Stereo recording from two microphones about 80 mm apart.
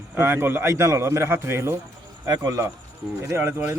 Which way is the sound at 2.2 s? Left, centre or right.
Right.